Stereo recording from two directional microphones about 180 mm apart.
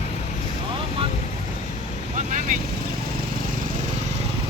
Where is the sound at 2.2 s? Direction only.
45° right (ahead or behind).